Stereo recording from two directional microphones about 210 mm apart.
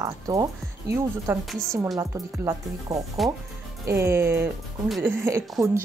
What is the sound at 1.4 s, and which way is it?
Speech, 5° left (ahead or behind).